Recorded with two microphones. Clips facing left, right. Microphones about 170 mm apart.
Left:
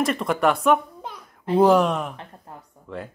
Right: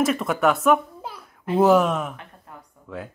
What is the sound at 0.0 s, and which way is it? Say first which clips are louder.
Speech: right 1 dB; centre (ahead or behind).